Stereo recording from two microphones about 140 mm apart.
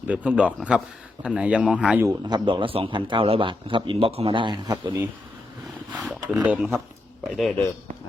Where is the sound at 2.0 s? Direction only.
30° right (ahead or behind).